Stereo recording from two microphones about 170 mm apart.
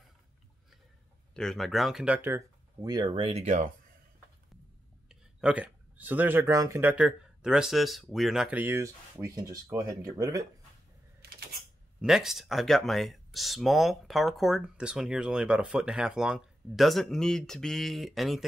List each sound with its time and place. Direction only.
1.3 s speech: 5° left (ahead or behind); by 3.7 s 45° right (ahead or behind)
5.0 s speech: 5° right (ahead or behind)
11.1 s camera: 65° right (ahead or behind)
12.0 s speech: 5° right (ahead or behind)